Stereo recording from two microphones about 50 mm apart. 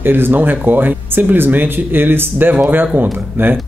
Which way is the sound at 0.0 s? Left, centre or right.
Right.